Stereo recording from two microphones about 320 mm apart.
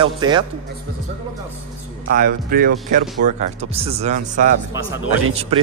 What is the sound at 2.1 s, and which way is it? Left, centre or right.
Speech, right.